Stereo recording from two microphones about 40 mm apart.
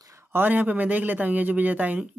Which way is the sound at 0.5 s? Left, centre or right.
Right.